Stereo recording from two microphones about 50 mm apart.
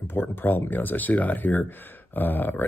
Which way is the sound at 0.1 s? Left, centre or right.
Left.